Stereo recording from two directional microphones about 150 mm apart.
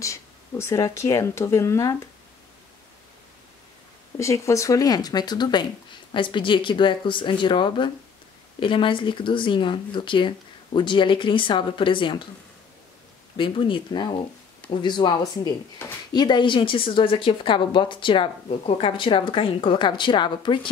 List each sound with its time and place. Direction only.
0.0 s speech: 20° left (ahead or behind)
4.2 s a woman's voice: 20° left (ahead or behind)
13.4 s a woman's voice: 35° left (ahead or behind)